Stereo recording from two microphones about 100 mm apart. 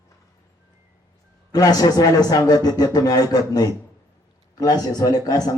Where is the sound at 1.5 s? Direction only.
40° left (ahead or behind).